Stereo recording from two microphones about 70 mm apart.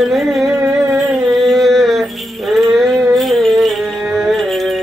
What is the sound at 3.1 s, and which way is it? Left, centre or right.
Music, centre.